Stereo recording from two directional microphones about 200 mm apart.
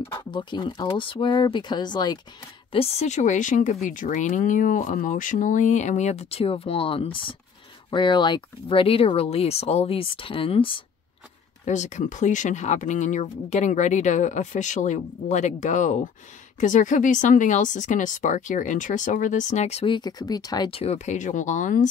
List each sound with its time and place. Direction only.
0.0 s speech: 20° left (ahead or behind); by 21.8 s 40° left (ahead or behind)